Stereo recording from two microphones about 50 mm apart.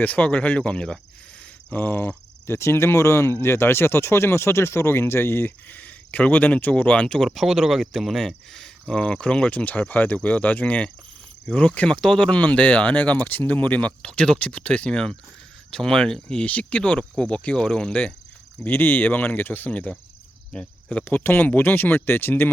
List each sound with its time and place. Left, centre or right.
0.0 s speech: left
1.7 s speech: left
2.5 s speech: left
3.3 s speech: left
5.6 s speech: left
7.3 s speech: centre; by 11.9 s left
11.9 s speech: centre
12.4 s speech: left
14.3 s speech: left; by 16.4 s centre
16.4 s speech: left
18.6 s speech: left
20.5 s speech: left
21.0 s speech: left